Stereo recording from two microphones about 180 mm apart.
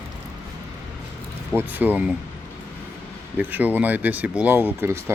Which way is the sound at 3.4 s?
10° right (ahead or behind).